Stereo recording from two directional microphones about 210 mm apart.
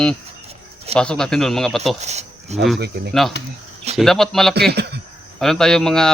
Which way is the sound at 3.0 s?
50° right (ahead or behind).